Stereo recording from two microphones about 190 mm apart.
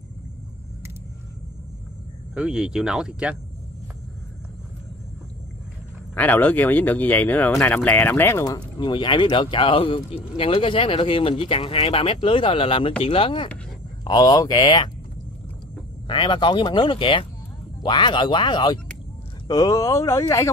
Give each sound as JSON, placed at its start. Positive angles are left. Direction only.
{"t": 2.3, "sound": "speech", "side_deg": -5}
{"t": 6.1, "sound": "speech", "side_deg": 10}
{"t": 16.1, "sound": "speech", "side_deg": 25}